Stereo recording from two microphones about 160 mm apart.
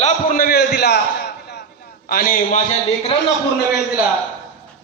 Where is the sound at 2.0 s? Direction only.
65° left (ahead or behind).